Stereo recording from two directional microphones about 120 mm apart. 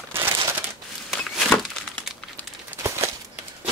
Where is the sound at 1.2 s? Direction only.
Centre (ahead or behind).